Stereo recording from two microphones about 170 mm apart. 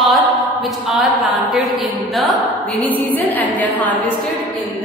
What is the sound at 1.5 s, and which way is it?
Speech, centre (ahead or behind).